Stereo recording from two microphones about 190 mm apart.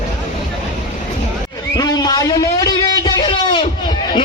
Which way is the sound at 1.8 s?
20° left (ahead or behind).